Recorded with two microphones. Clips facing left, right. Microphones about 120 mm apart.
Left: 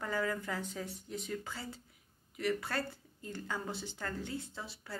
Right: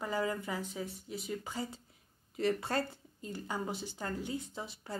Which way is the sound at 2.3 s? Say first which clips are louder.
Right 3 dB; 25° right (ahead or behind).